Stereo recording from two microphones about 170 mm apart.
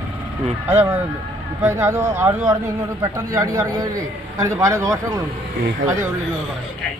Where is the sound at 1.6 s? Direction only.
15° right (ahead or behind).